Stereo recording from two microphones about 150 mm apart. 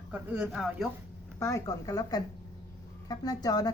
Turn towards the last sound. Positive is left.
turn(degrees=25)  # may be behind; listen again after turning